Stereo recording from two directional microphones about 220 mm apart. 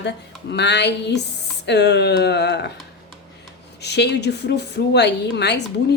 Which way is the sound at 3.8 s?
50° left (ahead or behind).